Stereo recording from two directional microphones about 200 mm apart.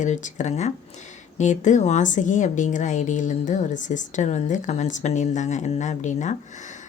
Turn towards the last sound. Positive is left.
turn(degrees=35)  # may be behind; listen again after turning